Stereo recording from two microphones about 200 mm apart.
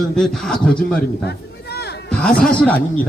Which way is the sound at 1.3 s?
55° left (ahead or behind).